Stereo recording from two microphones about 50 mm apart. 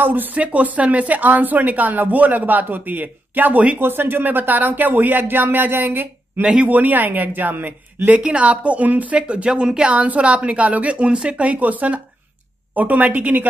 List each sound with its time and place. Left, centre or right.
0.0 s speech: right
3.8 s speech: right
8.2 s speech: right
9.9 s speech: right